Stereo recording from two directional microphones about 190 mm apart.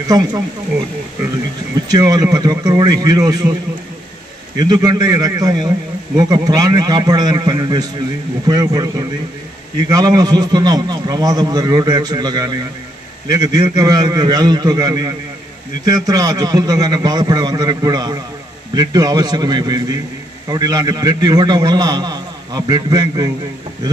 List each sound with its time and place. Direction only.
0.1 s a man's voice: 20° right (ahead or behind)
1.9 s a man's voice: 20° right (ahead or behind)
4.6 s a man's voice: 20° right (ahead or behind)